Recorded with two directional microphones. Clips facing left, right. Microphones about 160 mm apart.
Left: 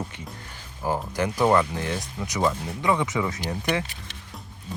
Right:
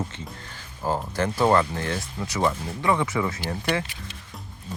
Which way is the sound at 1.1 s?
15° left (ahead or behind).